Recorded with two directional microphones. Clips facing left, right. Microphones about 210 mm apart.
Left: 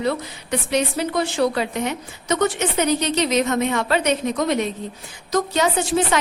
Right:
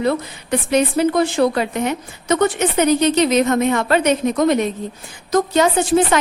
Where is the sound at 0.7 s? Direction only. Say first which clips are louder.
Right 6 dB; 50° right (ahead or behind).